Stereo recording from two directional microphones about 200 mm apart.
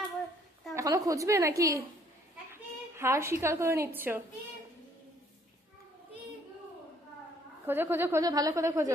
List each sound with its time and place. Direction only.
0.7 s a woman's voice: 15° right (ahead or behind)
7.7 s a woman's voice: 10° right (ahead or behind)